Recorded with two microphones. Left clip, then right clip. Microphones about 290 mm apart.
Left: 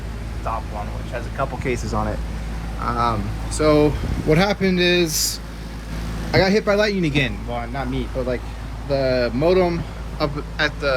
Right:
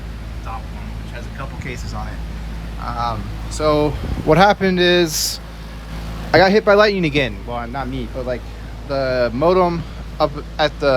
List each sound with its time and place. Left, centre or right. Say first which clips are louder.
1.6 s speech: left 6 dB; centre